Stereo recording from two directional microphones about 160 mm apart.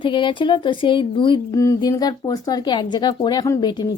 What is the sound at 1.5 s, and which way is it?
Speech, 20° left (ahead or behind).